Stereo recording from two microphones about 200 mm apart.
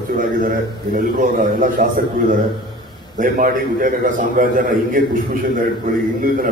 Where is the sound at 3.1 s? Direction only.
45° right (ahead or behind).